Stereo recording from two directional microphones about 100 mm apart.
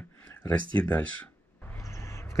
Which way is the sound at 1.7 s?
30° left (ahead or behind).